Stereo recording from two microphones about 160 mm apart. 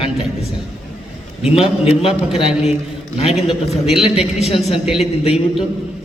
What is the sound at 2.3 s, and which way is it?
Speech, 5° right (ahead or behind).